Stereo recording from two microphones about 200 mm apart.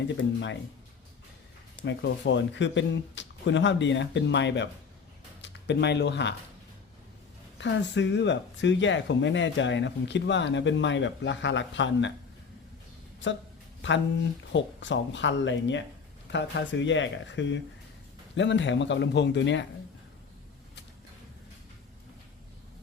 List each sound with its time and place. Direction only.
0.2 s speech: 65° left (ahead or behind)
1.8 s speech: 65° left (ahead or behind)
7.6 s speech: 60° left (ahead or behind)
14.5 s speech: 65° left (ahead or behind)